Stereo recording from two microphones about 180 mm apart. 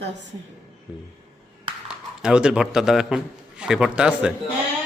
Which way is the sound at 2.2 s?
5° right (ahead or behind).